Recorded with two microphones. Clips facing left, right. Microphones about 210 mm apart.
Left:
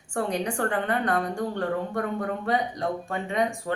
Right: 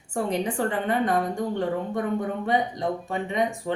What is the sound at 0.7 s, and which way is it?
Speech, 20° right (ahead or behind).